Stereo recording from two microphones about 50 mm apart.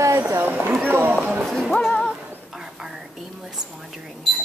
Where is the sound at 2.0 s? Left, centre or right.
Centre.